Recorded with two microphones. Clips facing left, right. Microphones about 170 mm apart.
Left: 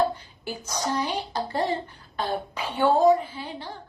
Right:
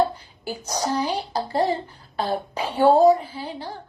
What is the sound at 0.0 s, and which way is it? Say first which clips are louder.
A woman's voice: right 2 dB; 35° right (ahead or behind).